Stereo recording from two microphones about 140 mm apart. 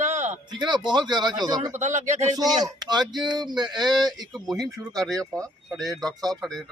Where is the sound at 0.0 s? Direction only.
55° right (ahead or behind).